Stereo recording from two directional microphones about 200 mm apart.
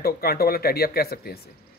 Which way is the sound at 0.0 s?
50° left (ahead or behind).